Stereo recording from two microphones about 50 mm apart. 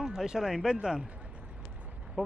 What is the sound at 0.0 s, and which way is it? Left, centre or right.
Speech, centre.